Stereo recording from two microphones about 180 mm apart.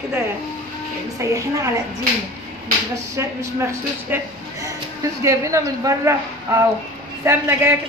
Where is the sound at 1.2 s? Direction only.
15° right (ahead or behind).